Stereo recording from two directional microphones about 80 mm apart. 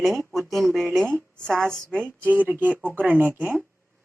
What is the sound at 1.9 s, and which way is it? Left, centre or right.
Speech, right.